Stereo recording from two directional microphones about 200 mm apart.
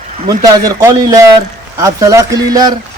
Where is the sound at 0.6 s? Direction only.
15° right (ahead or behind).